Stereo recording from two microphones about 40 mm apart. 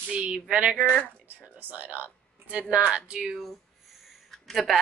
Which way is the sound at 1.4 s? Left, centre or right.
Right.